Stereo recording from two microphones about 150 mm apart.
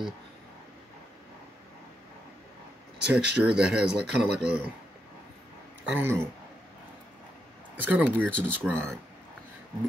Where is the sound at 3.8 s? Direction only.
90° right.